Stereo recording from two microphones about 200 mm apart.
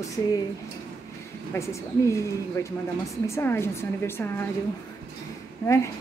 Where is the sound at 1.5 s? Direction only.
15° left (ahead or behind).